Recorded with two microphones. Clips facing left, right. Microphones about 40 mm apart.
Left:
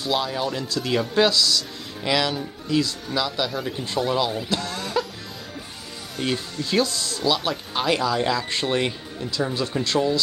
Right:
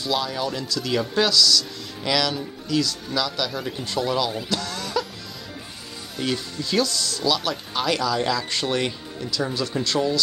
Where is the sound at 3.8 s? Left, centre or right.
Centre.